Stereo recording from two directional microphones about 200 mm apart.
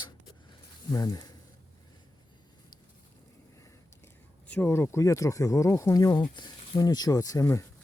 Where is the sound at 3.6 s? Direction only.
15° left (ahead or behind).